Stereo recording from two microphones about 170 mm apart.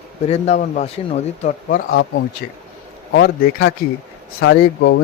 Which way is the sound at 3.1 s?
90° left.